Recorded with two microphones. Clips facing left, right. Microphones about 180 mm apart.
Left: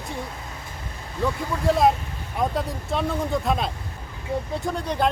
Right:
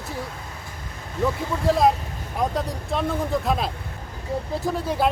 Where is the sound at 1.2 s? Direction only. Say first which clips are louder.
Right 1 dB; centre (ahead or behind).